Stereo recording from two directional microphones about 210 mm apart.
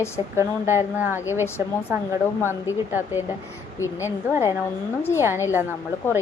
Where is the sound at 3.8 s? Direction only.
15° left (ahead or behind).